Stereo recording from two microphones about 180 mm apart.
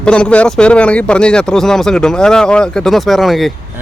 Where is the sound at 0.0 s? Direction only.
5° left (ahead or behind).